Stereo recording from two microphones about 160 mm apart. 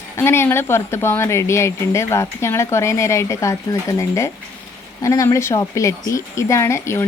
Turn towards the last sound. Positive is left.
turn(degrees=15)  # may be behind; listen again after turning